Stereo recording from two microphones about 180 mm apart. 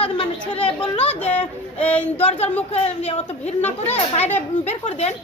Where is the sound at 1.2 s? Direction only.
10° left (ahead or behind).